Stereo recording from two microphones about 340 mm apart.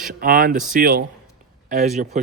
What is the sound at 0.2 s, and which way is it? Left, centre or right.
Speech, right.